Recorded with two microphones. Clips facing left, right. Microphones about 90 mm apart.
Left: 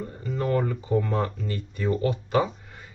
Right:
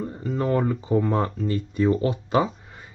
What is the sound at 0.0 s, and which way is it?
Speech, 25° right (ahead or behind).